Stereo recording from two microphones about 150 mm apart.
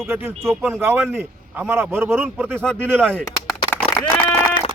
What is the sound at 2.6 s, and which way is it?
Speech, 5° left (ahead or behind).